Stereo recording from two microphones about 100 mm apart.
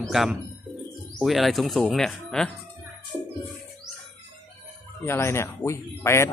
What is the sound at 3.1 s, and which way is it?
Music, 5° left (ahead or behind).